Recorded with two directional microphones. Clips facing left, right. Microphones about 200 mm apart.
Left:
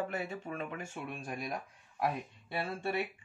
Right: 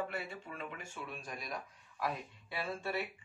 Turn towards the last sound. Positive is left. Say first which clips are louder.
# left 3 dB
turn(degrees=55)  # may be behind; listen again after turning